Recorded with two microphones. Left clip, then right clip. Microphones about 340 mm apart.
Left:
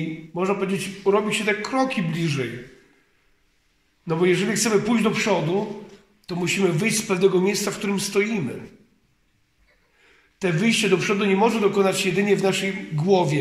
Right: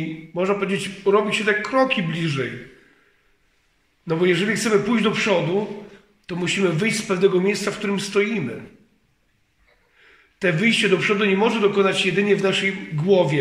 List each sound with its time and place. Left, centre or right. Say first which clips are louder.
0.3 s a man's voice: right 2 dB; centre
4.0 s a man's voice: right 1 dB; centre
10.4 s a man's voice: right 3 dB; centre